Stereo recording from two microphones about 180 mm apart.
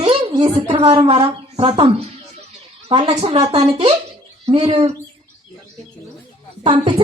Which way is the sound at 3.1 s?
35° right (ahead or behind).